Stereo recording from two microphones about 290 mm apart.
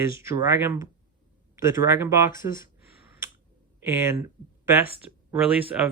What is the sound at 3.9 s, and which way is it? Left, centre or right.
Speech, centre.